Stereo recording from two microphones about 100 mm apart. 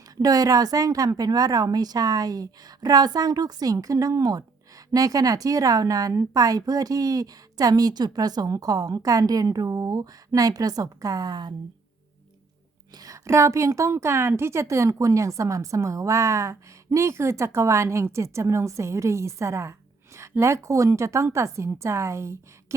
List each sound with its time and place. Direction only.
0.2 s speech: 35° right (ahead or behind)
12.9 s a woman's voice: 35° right (ahead or behind)